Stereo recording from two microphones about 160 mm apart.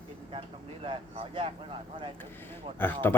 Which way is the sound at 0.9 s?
35° right (ahead or behind).